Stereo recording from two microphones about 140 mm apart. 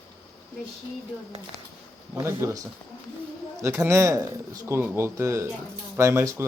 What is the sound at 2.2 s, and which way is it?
Speech, 20° right (ahead or behind).